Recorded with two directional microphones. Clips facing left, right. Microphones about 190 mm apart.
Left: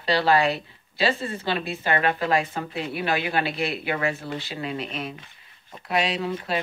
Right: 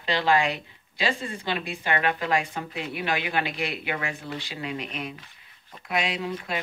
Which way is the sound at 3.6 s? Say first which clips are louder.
Left 5 dB; 15° right (ahead or behind).